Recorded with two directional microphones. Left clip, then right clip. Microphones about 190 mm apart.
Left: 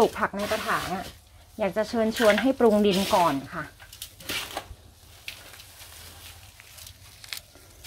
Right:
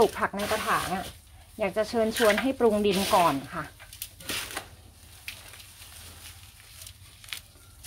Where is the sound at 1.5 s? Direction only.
30° left (ahead or behind).